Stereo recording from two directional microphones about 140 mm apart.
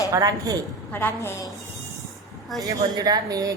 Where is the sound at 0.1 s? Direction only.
25° right (ahead or behind).